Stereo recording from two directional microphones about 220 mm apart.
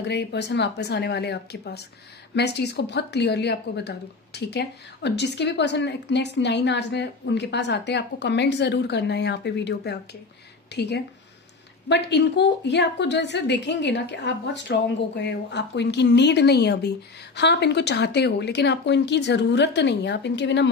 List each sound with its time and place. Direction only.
0.0 s a woman's voice: 50° left (ahead or behind)